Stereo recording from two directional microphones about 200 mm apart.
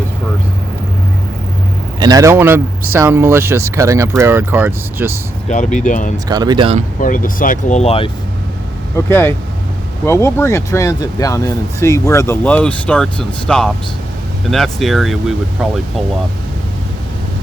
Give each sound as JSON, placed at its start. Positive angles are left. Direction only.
{"t": 2.0, "sound": "speech", "side_deg": -20}
{"t": 5.5, "sound": "speech", "side_deg": 35}
{"t": 6.2, "sound": "speech", "side_deg": -20}
{"t": 7.0, "sound": "speech", "side_deg": 45}
{"t": 9.0, "sound": "speech", "side_deg": 10}